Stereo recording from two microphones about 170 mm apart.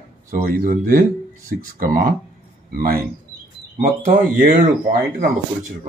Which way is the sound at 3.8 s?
45° right (ahead or behind).